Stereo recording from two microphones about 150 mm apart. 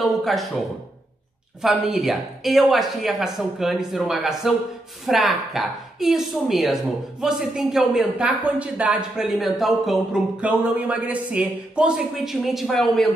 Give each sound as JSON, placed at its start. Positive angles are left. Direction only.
{"t": 0.0, "sound": "speech", "side_deg": 0}
{"t": 1.6, "sound": "a woman's voice", "side_deg": 0}